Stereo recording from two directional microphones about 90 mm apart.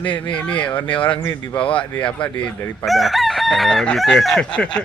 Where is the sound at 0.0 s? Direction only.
15° left (ahead or behind).